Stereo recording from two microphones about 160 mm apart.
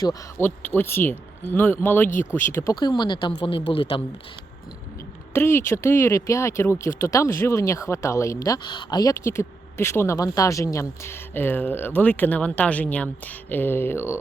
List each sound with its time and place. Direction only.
0.0 s speech: 20° left (ahead or behind)
2.7 s speech: 25° left (ahead or behind)
5.3 s speech: 15° left (ahead or behind)